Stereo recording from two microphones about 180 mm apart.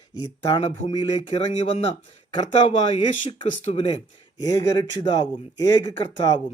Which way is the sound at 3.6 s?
35° left (ahead or behind).